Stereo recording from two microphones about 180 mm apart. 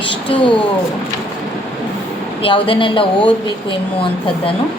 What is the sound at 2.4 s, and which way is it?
Speech, 30° left (ahead or behind).